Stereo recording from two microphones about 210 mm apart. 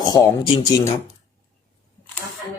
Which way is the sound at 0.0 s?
20° left (ahead or behind).